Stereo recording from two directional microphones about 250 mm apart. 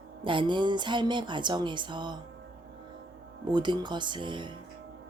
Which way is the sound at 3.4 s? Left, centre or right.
Centre.